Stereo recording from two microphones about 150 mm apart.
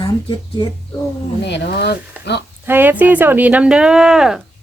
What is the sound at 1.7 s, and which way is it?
Speech, 90° left.